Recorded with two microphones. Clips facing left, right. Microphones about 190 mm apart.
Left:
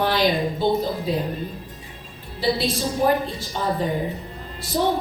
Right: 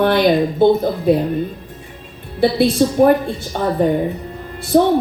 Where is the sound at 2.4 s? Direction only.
55° right (ahead or behind).